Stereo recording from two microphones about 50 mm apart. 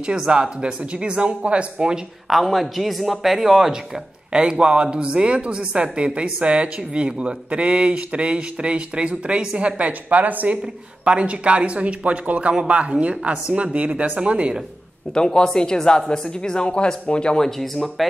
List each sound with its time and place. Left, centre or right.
0.0 s a woman's voice: centre
2.2 s speech: centre
4.3 s a woman's voice: centre
15.1 s speech: centre
17.5 s speech: centre